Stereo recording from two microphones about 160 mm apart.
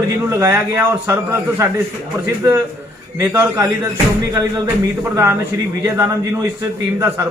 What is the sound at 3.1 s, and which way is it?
Speech, 20° right (ahead or behind).